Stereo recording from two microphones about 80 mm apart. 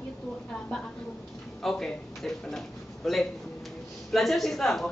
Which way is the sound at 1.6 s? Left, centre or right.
Centre.